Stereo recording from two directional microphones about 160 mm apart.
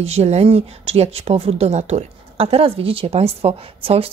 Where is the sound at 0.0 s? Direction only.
40° right (ahead or behind).